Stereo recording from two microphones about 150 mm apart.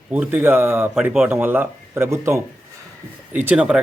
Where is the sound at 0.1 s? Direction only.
10° right (ahead or behind).